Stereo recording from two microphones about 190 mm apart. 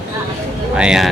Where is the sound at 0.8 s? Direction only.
5° right (ahead or behind).